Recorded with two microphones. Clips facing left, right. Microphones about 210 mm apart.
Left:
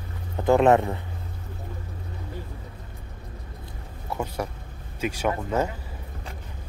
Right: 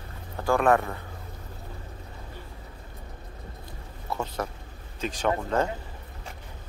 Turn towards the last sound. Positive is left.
turn(degrees=10)  # may be behind; listen again after turning